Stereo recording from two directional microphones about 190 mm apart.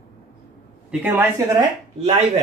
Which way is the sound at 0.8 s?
10° right (ahead or behind).